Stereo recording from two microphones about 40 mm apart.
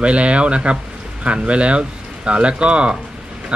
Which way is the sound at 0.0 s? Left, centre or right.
Right.